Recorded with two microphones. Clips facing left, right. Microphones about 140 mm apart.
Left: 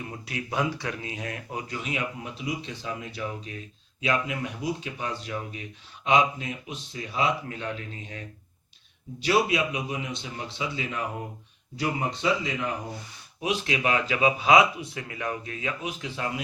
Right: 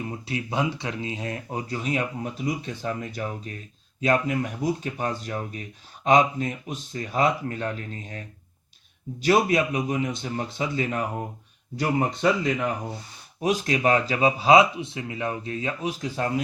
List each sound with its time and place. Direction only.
0.1 s speech: 25° right (ahead or behind); by 8.2 s 45° right (ahead or behind)
9.2 s speech: 45° right (ahead or behind)
13.4 s speech: 40° right (ahead or behind)